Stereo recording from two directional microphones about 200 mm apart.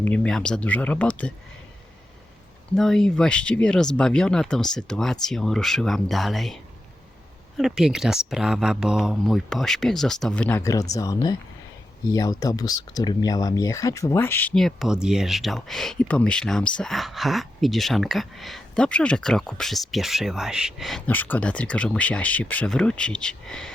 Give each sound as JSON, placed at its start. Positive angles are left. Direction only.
{"t": 0.0, "sound": "speech", "side_deg": 5}
{"t": 2.7, "sound": "speech", "side_deg": 0}
{"t": 10.6, "sound": "speech", "side_deg": 15}